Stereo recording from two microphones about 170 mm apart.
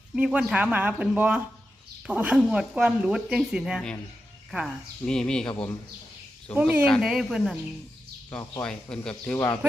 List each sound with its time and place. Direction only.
0.2 s speech: 5° right (ahead or behind)
6.6 s speech: 10° right (ahead or behind)
8.6 s speech: 5° left (ahead or behind)